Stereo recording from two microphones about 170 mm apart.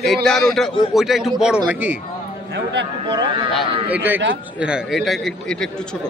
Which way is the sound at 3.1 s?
25° right (ahead or behind).